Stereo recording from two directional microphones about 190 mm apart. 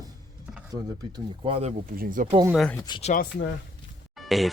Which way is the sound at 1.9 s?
50° right (ahead or behind).